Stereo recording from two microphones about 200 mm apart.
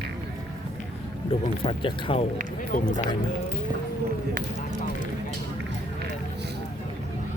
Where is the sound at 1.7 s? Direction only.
25° left (ahead or behind).